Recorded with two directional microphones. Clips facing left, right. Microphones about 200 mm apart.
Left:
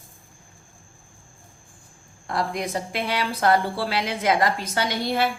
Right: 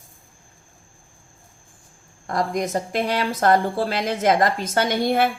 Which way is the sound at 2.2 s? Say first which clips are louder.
Right 3 dB; 45° right (ahead or behind).